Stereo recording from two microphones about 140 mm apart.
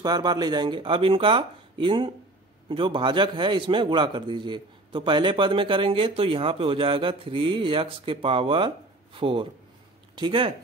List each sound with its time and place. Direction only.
0.0 s a man's voice: 30° right (ahead or behind)